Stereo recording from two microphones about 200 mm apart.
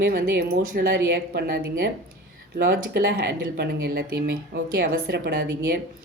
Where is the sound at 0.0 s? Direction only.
50° right (ahead or behind).